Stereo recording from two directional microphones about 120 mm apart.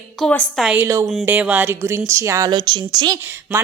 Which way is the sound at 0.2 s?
Centre (ahead or behind).